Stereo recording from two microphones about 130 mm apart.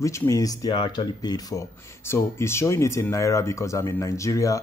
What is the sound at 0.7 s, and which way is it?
Speech, 40° left (ahead or behind).